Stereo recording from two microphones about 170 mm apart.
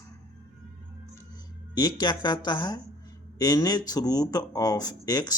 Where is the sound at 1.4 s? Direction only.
25° left (ahead or behind).